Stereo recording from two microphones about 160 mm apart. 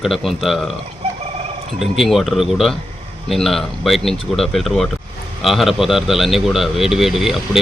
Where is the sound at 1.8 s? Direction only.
Centre (ahead or behind).